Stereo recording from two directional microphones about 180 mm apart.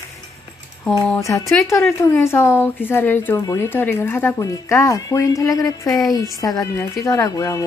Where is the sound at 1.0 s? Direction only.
5° left (ahead or behind).